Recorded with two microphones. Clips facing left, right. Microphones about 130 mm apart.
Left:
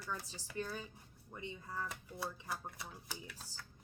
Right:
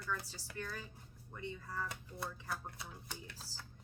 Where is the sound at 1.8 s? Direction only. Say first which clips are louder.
Left 2 dB; 5° left (ahead or behind).